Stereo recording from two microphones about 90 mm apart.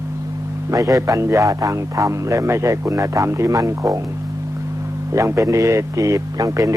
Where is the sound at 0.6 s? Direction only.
40° right (ahead or behind).